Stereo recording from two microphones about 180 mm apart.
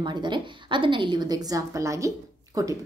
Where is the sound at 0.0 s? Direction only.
25° right (ahead or behind).